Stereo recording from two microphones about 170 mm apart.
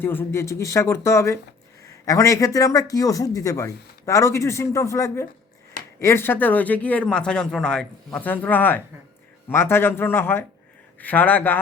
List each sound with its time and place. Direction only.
0.0 s a man's voice: 10° left (ahead or behind)